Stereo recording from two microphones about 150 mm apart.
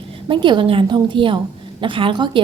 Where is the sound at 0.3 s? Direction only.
30° right (ahead or behind).